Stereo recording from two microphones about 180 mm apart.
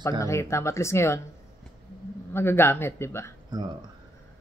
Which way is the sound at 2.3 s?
15° left (ahead or behind).